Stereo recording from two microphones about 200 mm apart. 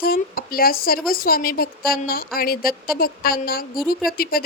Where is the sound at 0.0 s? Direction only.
45° left (ahead or behind).